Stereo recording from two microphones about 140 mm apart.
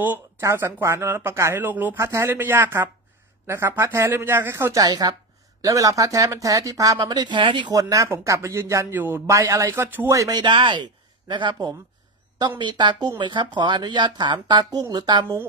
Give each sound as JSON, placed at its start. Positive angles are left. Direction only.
{"t": 0.0, "sound": "speech", "side_deg": -15}
{"t": 4.8, "sound": "speech", "side_deg": -30}